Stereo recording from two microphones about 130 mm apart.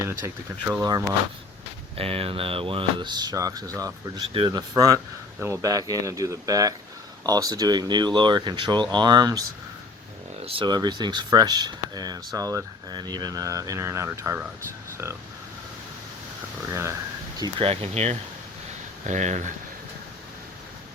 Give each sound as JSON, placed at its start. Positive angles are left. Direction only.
{"t": 0.0, "sound": "a sound", "side_deg": -20}
{"t": 2.0, "sound": "speech", "side_deg": -45}
{"t": 10.4, "sound": "speech", "side_deg": -40}
{"t": 16.7, "sound": "a sound", "side_deg": -20}
{"t": 17.6, "sound": "speech", "side_deg": -50}
{"t": 19.0, "sound": "speech", "side_deg": -65}